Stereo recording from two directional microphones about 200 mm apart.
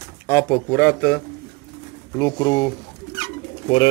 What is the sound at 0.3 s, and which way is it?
Speech, 15° left (ahead or behind).